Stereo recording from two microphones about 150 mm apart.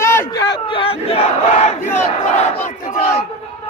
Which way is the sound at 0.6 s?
40° left (ahead or behind).